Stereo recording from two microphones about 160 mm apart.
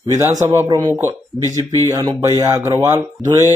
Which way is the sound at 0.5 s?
20° right (ahead or behind).